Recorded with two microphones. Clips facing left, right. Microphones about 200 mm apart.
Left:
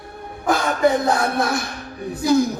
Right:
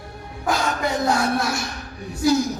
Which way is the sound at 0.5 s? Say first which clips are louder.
Left 6 dB; 55° left (ahead or behind).